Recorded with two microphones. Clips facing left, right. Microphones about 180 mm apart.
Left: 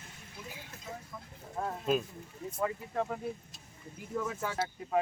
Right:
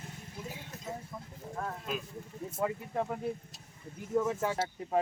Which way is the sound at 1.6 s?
25° left (ahead or behind).